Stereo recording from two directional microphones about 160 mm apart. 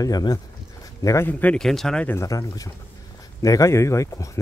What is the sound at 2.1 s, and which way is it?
Speech, 20° left (ahead or behind).